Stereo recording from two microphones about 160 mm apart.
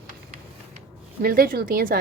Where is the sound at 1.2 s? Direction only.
65° right (ahead or behind).